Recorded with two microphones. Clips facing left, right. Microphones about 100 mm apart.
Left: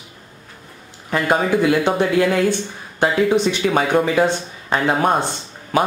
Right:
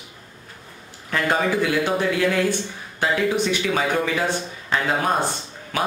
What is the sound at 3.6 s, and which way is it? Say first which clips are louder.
Speech: left 5 dB; 45° left (ahead or behind).